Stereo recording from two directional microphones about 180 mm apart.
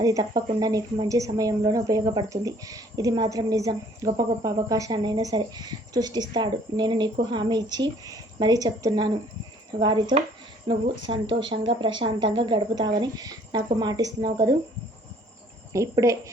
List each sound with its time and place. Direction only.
0.0 s a woman's voice: 20° right (ahead or behind)
15.7 s speech: 15° right (ahead or behind)